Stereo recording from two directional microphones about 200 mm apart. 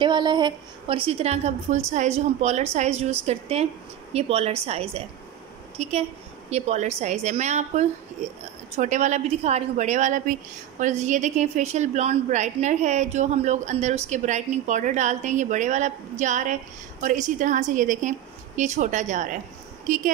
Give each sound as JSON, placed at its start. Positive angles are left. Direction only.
{"t": 0.0, "sound": "a woman's voice", "side_deg": -20}